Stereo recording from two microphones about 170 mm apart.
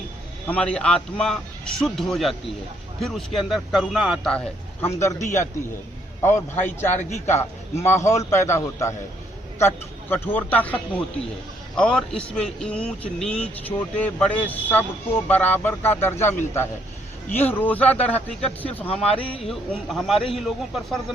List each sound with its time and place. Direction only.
0.4 s a man's voice: 5° left (ahead or behind)
4.9 s a man's voice: 15° left (ahead or behind)
17.3 s speech: 10° left (ahead or behind)
19.0 s speech: 35° left (ahead or behind)
19.5 s a man's voice: centre (ahead or behind)